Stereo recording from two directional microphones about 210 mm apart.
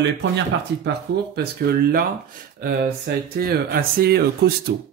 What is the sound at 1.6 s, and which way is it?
Speech, 45° right (ahead or behind).